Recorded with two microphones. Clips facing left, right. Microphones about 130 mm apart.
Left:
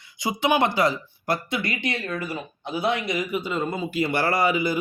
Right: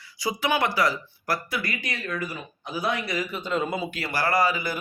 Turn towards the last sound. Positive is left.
turn(degrees=20)  # may be behind; listen again after turning